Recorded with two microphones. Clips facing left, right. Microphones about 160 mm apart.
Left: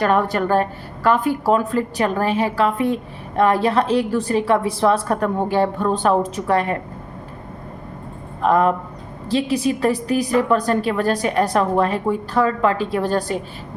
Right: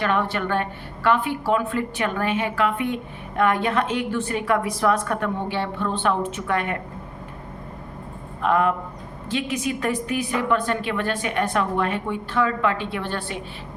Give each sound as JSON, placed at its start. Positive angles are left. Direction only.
{"t": 0.0, "sound": "a woman's voice", "side_deg": 40}
{"t": 8.4, "sound": "a woman's voice", "side_deg": 35}